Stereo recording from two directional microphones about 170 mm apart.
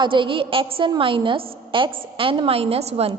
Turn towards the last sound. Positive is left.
turn(degrees=-35)  # may be behind; listen again after turning